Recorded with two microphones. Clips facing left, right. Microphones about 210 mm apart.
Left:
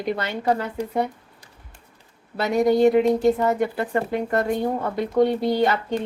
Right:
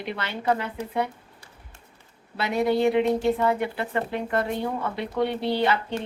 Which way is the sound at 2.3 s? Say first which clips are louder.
Left 4 dB; 45° left (ahead or behind).